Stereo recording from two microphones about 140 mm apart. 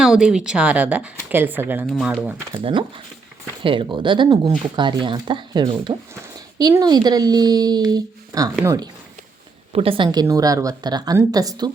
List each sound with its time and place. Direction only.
0.0 s speech: 5° right (ahead or behind)
3.6 s a woman's voice: 35° right (ahead or behind)
9.7 s a woman's voice: 40° right (ahead or behind)